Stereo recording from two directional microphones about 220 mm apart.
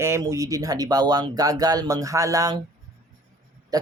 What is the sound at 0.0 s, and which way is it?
Speech, 15° right (ahead or behind).